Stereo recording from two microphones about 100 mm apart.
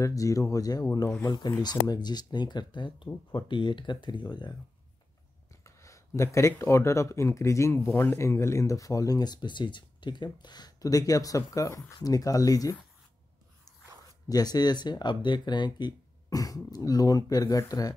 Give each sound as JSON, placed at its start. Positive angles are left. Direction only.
{"t": 0.0, "sound": "speech", "side_deg": 35}
{"t": 5.6, "sound": "a sound", "side_deg": 30}
{"t": 6.6, "sound": "speech", "side_deg": 30}
{"t": 14.3, "sound": "speech", "side_deg": 40}